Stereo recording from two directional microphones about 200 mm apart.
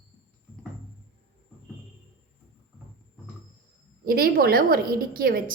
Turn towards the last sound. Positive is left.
turn(degrees=-50)  # may be behind; listen again after turning